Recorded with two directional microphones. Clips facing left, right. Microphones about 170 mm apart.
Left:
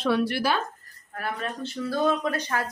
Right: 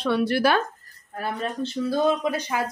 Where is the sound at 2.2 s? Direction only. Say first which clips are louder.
Right 2 dB; 10° right (ahead or behind).